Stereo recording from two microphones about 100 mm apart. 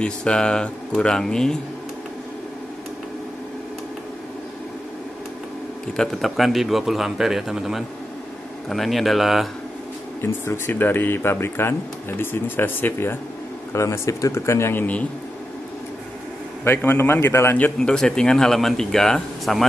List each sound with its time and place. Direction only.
0.0 s speech: 10° left (ahead or behind)
5.9 s a man's voice: centre (ahead or behind)
10.2 s speech: 25° left (ahead or behind)
16.6 s speech: 20° left (ahead or behind)
17.7 s a man's voice: 10° left (ahead or behind)